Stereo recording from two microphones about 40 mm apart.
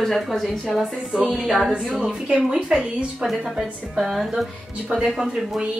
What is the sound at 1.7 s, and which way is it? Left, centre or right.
A woman's voice, right.